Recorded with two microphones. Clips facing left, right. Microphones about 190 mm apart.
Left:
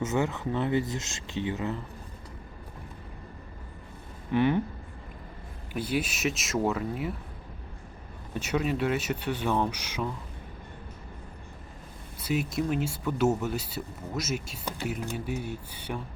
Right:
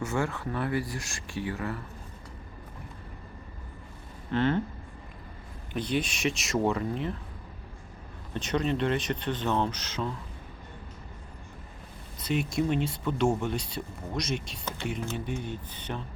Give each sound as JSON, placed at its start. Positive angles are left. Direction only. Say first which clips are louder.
{"t": 0.0, "sound": "speech", "louder": "left 2 dB", "side_deg": 20}
{"t": 4.3, "sound": "speech", "louder": "left 2 dB", "side_deg": 15}
{"t": 5.7, "sound": "speech", "louder": "even", "side_deg": 5}
{"t": 8.3, "sound": "speech", "louder": "even", "side_deg": 10}
{"t": 12.2, "sound": "speech", "louder": "right 1 dB", "side_deg": 5}